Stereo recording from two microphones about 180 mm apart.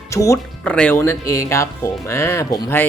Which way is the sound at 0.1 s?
15° left (ahead or behind).